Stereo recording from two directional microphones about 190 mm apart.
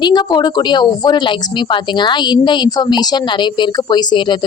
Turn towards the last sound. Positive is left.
turn(degrees=25)  # may be behind; listen again after turning